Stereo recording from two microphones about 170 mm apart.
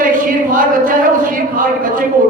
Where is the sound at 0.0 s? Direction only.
50° right (ahead or behind).